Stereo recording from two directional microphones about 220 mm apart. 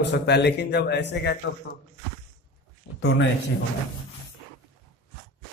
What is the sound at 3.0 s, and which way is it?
Speech, 50° left (ahead or behind).